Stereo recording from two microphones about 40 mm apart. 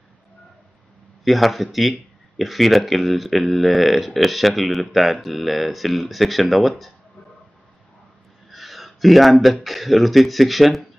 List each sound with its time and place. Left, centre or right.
1.2 s speech: centre
8.5 s speech: centre